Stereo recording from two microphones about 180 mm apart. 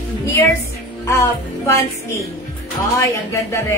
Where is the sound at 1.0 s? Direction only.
15° left (ahead or behind).